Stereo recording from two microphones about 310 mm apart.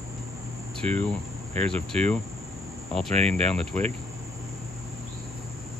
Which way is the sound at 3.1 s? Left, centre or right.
Centre.